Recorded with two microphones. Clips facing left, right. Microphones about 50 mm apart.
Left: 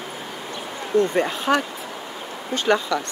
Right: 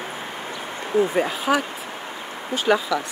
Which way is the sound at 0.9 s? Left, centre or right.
Centre.